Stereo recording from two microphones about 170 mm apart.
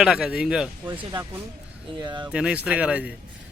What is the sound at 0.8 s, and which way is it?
Speech, 25° right (ahead or behind).